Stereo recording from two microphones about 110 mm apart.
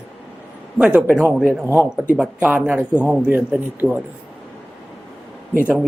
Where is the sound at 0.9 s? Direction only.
15° right (ahead or behind).